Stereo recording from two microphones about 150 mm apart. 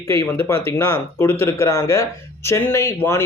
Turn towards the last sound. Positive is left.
turn(degrees=15)  # may be behind; listen again after turning